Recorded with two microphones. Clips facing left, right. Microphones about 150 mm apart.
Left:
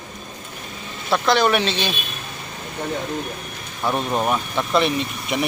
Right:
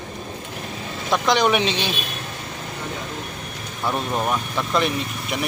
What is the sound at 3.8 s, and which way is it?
Speech, 10° left (ahead or behind).